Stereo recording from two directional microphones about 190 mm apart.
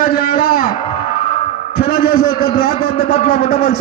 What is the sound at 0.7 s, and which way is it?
Music, 25° left (ahead or behind).